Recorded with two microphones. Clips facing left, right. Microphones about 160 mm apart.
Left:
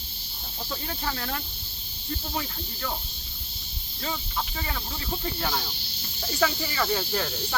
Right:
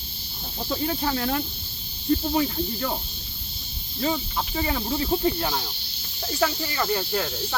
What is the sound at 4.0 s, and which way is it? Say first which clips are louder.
Speech: right 6 dB; 15° right (ahead or behind).